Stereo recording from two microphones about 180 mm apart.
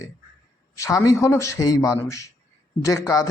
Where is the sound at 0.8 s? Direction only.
15° left (ahead or behind).